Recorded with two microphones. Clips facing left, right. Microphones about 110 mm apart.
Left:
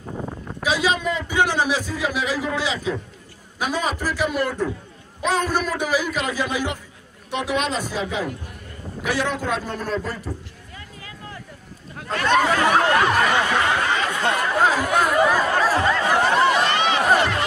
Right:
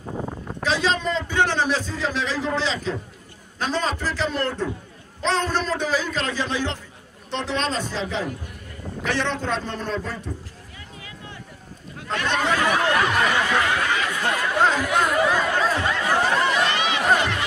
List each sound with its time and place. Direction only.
0.1 s a sound: 20° right (ahead or behind)
0.6 s a man's voice: 10° left (ahead or behind)
9.0 s a man's voice: 10° left (ahead or behind)
10.3 s speech: 60° left (ahead or behind)
12.1 s speech: 40° left (ahead or behind)
14.8 s chatter: 35° left (ahead or behind)
15.7 s a sound: 40° left (ahead or behind)